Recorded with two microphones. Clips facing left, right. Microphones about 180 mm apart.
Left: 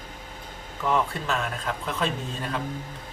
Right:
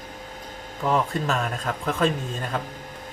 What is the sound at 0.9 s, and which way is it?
Speech, 40° right (ahead or behind).